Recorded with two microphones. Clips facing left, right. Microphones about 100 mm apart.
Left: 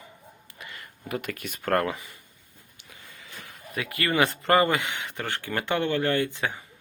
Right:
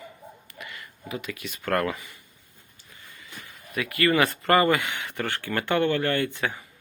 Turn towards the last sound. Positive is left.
turn(degrees=20)  # may be behind; listen again after turning